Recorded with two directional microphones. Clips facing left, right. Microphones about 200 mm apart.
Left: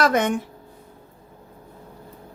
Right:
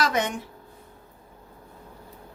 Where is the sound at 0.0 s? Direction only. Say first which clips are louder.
Left 6 dB; 55° left (ahead or behind).